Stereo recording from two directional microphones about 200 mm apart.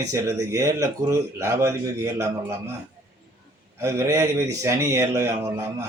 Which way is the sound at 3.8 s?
15° right (ahead or behind).